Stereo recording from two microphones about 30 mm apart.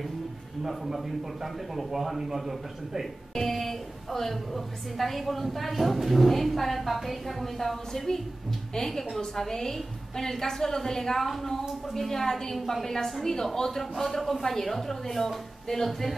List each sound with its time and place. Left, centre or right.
0.7 s a woman's voice: centre
3.3 s a woman's voice: centre